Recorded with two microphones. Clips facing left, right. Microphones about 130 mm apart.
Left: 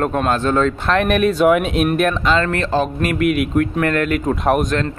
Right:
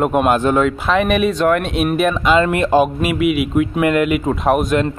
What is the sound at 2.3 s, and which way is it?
A man's voice, 15° right (ahead or behind).